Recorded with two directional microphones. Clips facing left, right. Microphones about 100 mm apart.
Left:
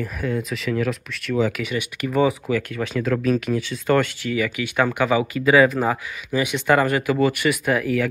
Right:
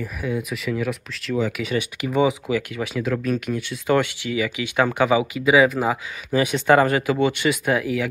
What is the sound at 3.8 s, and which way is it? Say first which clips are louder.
Speech: even; 15° right (ahead or behind).